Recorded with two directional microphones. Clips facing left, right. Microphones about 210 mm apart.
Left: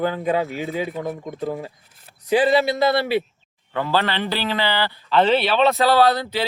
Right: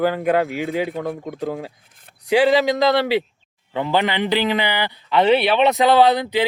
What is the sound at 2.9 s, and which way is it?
Speech, 90° right.